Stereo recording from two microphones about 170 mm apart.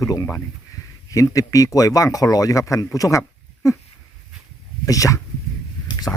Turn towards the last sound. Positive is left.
turn(degrees=15)  # may be behind; listen again after turning